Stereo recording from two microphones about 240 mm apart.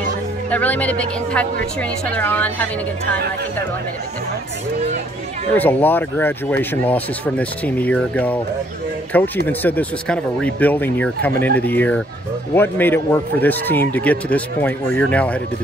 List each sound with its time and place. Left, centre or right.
0.5 s speech: centre
5.5 s speech: centre